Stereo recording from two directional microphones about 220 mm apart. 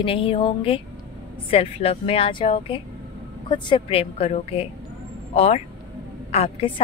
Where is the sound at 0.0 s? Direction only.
25° left (ahead or behind).